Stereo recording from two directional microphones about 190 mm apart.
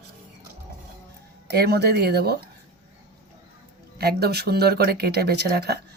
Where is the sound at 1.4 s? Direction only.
60° right (ahead or behind).